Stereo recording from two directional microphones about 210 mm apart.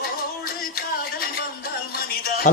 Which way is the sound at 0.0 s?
45° left (ahead or behind).